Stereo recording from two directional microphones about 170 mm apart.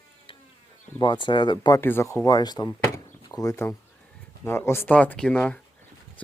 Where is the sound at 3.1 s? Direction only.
20° left (ahead or behind).